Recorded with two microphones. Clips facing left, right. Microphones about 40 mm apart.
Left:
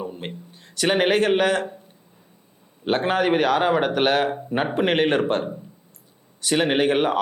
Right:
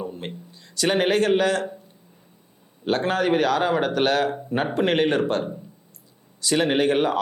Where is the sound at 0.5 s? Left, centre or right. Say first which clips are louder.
Left 1 dB; left.